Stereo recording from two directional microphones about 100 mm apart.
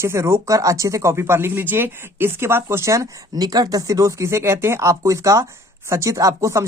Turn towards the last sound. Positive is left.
turn(degrees=-30)  # may be behind; listen again after turning